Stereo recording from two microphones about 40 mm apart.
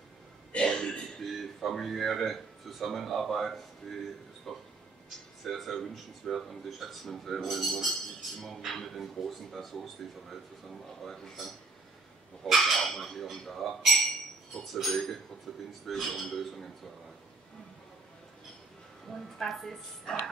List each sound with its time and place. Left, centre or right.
0.5 s a sound: left
1.3 s speech: centre
11.1 s speech: centre
19.0 s speech: centre
20.1 s dog: centre